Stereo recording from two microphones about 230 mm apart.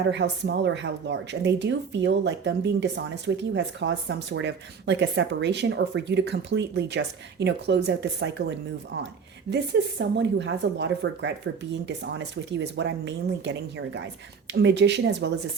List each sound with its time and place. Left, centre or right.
0.0 s speech: right
10.0 s speech: right
12.5 s speech: right